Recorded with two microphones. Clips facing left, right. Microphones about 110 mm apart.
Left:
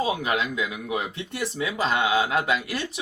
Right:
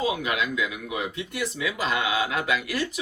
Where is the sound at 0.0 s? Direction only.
30° left (ahead or behind).